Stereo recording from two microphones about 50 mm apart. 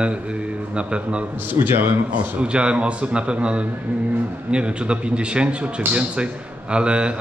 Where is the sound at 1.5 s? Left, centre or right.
Right.